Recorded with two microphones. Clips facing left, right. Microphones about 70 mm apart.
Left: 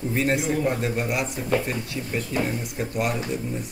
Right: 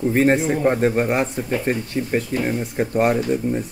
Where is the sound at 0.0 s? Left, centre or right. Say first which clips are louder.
Right 7 dB; right.